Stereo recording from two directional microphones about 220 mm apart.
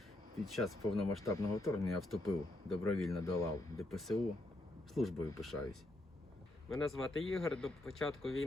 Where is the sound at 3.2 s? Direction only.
15° left (ahead or behind).